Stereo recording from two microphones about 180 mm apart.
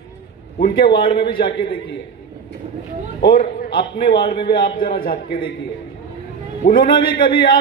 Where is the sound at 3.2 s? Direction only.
55° left (ahead or behind).